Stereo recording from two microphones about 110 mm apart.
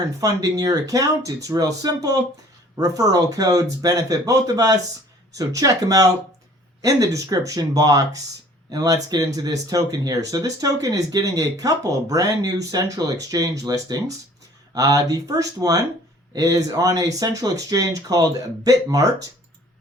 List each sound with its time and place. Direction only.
0.2 s speech: 30° right (ahead or behind)